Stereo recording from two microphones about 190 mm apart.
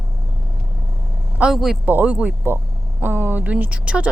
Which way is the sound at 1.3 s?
5° right (ahead or behind).